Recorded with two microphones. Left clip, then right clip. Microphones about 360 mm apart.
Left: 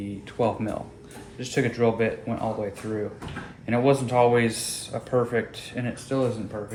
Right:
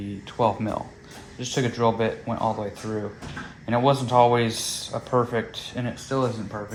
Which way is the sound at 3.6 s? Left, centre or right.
Centre.